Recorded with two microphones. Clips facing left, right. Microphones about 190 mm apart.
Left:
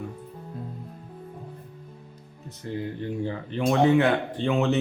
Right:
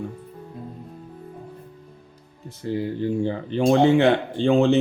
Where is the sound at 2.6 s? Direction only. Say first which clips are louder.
Right 6 dB; 30° right (ahead or behind).